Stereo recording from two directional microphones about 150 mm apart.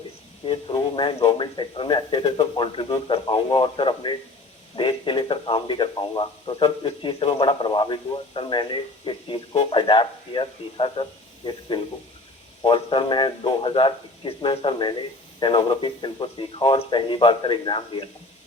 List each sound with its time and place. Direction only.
0.4 s speech: 30° left (ahead or behind)
12.6 s speech: 35° left (ahead or behind)